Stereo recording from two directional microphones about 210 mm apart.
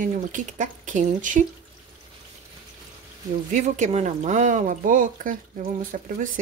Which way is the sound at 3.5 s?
35° right (ahead or behind).